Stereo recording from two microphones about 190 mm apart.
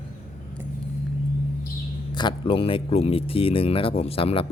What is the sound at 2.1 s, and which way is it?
Speech, 25° left (ahead or behind).